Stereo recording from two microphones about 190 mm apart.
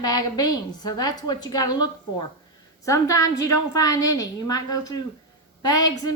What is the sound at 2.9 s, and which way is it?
A woman's voice, 15° left (ahead or behind).